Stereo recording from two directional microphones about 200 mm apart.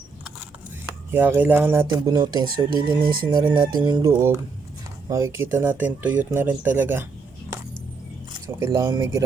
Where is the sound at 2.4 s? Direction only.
45° right (ahead or behind).